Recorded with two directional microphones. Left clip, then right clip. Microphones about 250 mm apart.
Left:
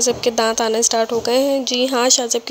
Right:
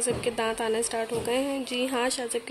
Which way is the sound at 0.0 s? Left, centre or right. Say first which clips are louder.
Left 11 dB; left.